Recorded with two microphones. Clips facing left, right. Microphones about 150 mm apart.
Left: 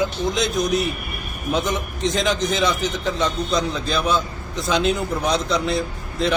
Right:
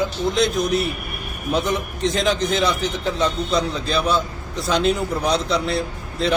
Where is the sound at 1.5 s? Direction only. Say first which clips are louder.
Right 1 dB; 5° right (ahead or behind).